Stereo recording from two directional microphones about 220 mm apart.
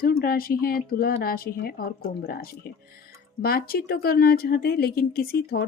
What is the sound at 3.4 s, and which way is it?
Speech, 45° left (ahead or behind).